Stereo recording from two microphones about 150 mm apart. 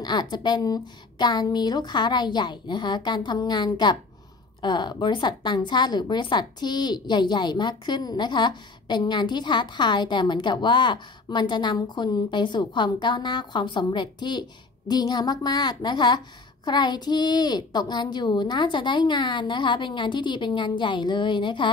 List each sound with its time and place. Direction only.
0.0 s a woman's voice: 30° left (ahead or behind)